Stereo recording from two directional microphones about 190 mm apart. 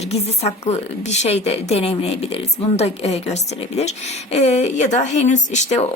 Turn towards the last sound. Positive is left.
turn(degrees=40)  # may be behind; listen again after turning